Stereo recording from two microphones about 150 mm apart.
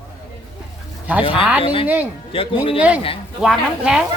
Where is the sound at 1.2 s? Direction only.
40° left (ahead or behind).